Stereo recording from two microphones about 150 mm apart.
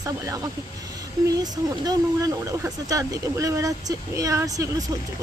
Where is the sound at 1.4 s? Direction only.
25° right (ahead or behind).